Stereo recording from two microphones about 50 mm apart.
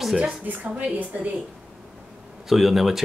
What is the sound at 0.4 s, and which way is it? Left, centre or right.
Speech, right.